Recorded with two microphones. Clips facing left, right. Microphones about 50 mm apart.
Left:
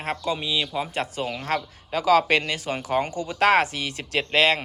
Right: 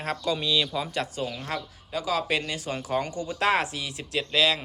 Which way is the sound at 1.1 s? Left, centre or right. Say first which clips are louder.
Left 3 dB; left.